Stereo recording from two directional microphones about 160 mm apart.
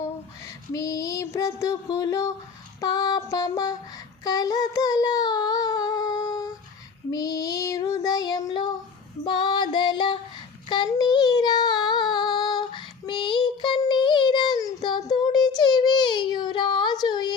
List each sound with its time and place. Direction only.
0.7 s child singing: 20° left (ahead or behind)